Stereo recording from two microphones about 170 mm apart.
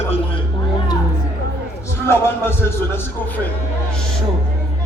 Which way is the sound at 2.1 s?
15° left (ahead or behind).